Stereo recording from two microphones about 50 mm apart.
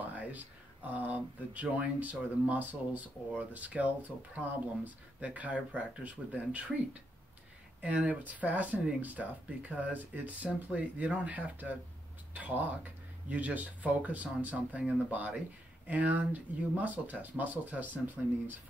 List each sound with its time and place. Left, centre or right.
0.1 s speech: right